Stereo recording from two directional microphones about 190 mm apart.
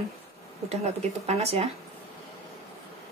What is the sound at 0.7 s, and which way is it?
Speech, 35° right (ahead or behind).